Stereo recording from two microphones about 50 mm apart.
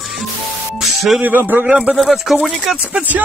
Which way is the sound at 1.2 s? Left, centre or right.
Right.